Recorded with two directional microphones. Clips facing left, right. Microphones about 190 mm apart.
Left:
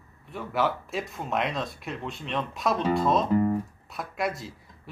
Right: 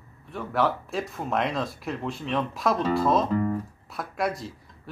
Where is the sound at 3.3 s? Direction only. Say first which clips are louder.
Left 2 dB; 15° left (ahead or behind).